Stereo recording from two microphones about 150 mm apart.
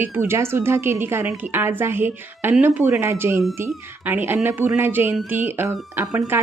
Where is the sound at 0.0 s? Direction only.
15° right (ahead or behind).